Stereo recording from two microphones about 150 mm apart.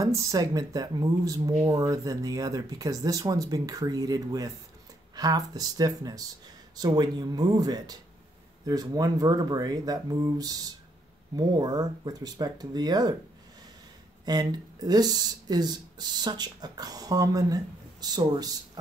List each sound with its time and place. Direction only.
0.0 s speech: 25° right (ahead or behind)
14.2 s speech: 25° right (ahead or behind)